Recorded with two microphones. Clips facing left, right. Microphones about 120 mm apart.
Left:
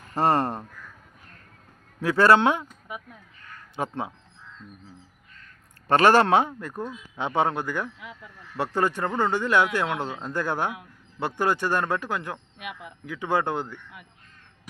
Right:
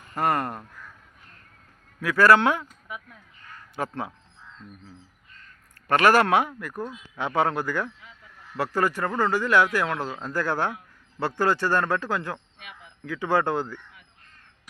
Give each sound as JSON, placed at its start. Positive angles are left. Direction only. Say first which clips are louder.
{"t": 0.1, "sound": "speech", "louder": "left 3 dB", "side_deg": 30}
{"t": 2.0, "sound": "a man's voice", "louder": "even", "side_deg": 30}
{"t": 5.9, "sound": "speech", "louder": "left 1 dB", "side_deg": 25}
{"t": 7.9, "sound": "speech", "louder": "left 8 dB", "side_deg": 80}
{"t": 8.5, "sound": "a man's voice", "louder": "even", "side_deg": 25}
{"t": 12.5, "sound": "a sound", "louder": "left 8 dB", "side_deg": 70}
{"t": 13.1, "sound": "speech", "louder": "right 2 dB", "side_deg": 20}